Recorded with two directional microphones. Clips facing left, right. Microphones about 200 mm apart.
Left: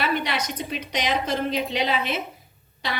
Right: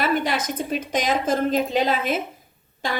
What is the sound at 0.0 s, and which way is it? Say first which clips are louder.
Speech: right 3 dB; 45° right (ahead or behind).